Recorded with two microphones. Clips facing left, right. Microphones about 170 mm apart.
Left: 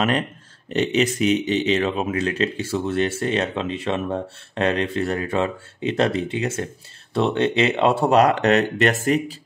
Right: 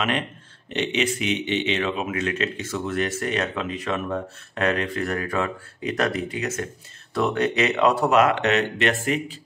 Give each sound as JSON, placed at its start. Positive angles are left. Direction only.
{"t": 0.7, "sound": "speech", "side_deg": 40}